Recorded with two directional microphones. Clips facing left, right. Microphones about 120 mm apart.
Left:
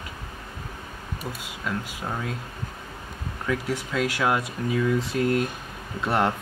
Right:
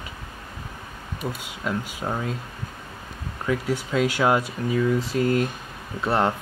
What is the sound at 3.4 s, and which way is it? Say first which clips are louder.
Speech: right 3 dB; centre (ahead or behind).